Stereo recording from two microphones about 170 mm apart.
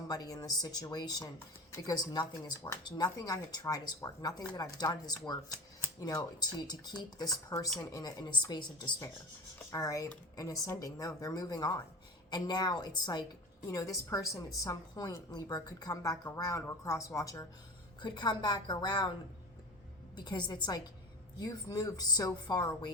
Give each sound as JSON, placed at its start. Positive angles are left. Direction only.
{"t": 0.1, "sound": "a woman's voice", "side_deg": 25}
{"t": 20.1, "sound": "a woman's voice", "side_deg": 25}